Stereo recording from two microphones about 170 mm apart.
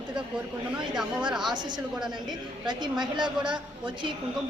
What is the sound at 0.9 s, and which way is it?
Speech, 5° right (ahead or behind).